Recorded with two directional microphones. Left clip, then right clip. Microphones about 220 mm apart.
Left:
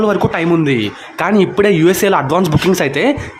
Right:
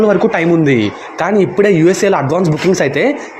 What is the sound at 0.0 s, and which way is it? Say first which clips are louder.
A man's voice: right 3 dB; centre (ahead or behind).